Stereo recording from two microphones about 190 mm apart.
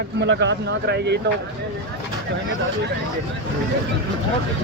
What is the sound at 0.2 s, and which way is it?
Speech, 70° right (ahead or behind).